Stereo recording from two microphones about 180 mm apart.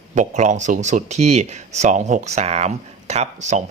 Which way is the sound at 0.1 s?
40° right (ahead or behind).